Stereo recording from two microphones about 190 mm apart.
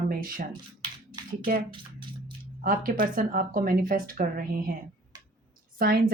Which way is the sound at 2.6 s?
50° right (ahead or behind).